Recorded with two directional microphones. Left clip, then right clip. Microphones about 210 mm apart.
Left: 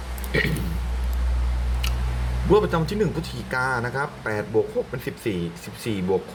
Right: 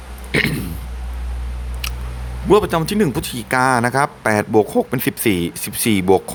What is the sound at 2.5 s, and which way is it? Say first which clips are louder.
Speech: right 5 dB; 40° right (ahead or behind).